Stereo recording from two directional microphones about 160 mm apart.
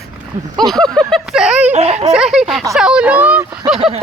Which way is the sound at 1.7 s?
40° right (ahead or behind).